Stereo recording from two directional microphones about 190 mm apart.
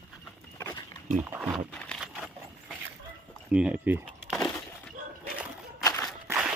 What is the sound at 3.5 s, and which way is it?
Speech, 5° right (ahead or behind).